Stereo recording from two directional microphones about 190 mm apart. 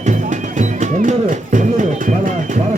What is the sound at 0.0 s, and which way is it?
Speech, 40° right (ahead or behind).